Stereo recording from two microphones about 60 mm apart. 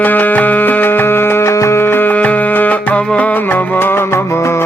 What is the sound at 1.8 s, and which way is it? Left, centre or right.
Music, left.